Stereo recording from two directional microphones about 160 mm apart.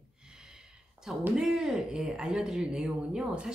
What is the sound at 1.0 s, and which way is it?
A woman's voice, 5° right (ahead or behind).